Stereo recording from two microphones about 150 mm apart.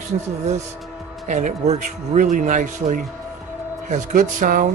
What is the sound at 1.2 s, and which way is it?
A man's voice, 55° right (ahead or behind).